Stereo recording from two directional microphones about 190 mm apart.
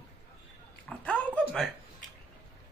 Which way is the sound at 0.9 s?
5° left (ahead or behind).